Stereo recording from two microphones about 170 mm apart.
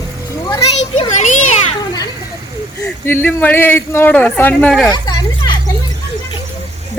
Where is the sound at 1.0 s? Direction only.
45° left (ahead or behind).